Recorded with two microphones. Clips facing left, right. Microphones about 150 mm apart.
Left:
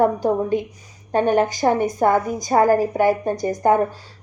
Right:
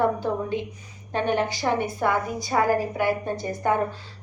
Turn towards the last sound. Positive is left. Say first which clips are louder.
# left 7 dB
turn(degrees=40)  # may be behind; listen again after turning